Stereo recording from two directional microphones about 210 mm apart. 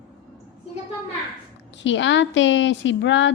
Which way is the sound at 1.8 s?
60° left (ahead or behind).